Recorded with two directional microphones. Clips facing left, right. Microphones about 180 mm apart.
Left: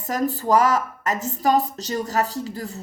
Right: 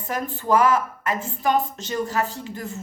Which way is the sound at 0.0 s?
40° left (ahead or behind).